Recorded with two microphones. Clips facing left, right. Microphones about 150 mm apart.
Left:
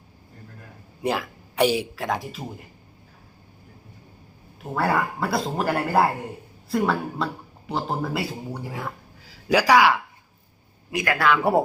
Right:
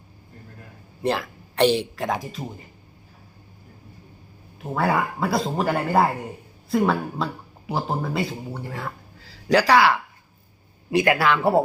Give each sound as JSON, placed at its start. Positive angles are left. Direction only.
{"t": 1.0, "sound": "speech", "side_deg": 10}
{"t": 4.6, "sound": "speech", "side_deg": 0}
{"t": 10.9, "sound": "speech", "side_deg": -25}
{"t": 11.3, "sound": "speech", "side_deg": 15}